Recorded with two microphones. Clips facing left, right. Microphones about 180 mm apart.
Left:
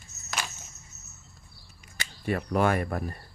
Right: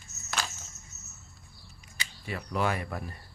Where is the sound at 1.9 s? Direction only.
60° left (ahead or behind).